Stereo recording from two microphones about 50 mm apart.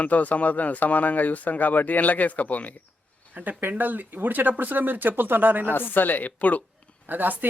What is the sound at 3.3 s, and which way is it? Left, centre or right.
Speech, right.